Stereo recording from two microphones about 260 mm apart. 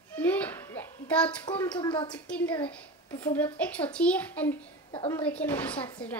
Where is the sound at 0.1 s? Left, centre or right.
Centre.